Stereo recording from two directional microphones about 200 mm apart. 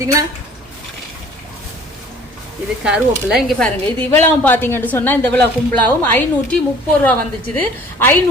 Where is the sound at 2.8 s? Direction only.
5° right (ahead or behind).